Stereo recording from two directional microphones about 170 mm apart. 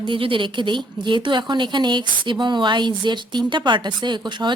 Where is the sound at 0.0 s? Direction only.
30° right (ahead or behind).